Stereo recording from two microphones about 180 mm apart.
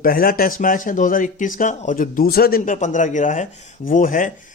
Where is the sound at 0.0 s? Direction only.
55° left (ahead or behind).